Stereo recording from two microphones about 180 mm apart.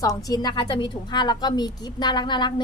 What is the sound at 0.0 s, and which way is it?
A woman's voice, 20° left (ahead or behind).